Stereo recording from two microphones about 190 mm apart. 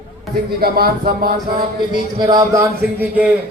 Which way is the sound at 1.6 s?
25° right (ahead or behind).